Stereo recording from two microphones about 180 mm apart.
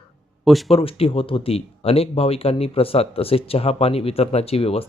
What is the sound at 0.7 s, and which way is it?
Speech, 30° left (ahead or behind).